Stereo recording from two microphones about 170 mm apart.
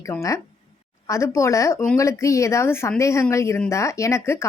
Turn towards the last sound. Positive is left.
turn(degrees=15)  # may be behind; listen again after turning